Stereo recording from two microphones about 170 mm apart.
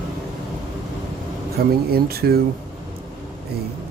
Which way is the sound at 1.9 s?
65° right (ahead or behind).